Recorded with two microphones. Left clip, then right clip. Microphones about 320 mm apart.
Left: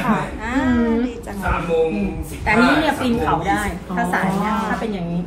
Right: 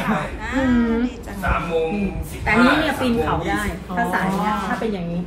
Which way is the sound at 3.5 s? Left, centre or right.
Centre.